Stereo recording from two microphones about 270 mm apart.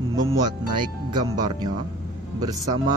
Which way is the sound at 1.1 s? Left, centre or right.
Centre.